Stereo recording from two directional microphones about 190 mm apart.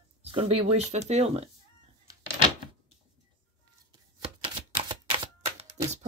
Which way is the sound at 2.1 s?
20° right (ahead or behind).